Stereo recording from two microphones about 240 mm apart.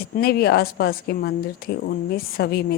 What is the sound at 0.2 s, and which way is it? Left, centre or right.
Speech, left.